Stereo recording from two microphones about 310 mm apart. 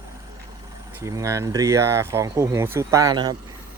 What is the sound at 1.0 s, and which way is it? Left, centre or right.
Speech, centre.